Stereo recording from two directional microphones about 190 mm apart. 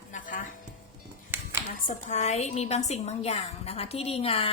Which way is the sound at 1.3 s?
10° right (ahead or behind).